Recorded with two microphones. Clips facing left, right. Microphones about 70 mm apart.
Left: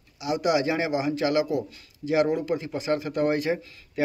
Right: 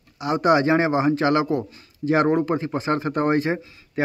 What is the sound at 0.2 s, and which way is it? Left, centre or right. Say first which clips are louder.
Speech: right 5 dB; right.